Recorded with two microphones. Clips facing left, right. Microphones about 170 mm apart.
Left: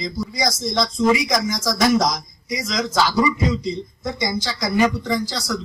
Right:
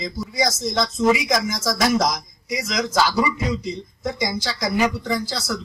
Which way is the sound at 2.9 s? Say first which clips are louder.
Left 2 dB; 10° right (ahead or behind).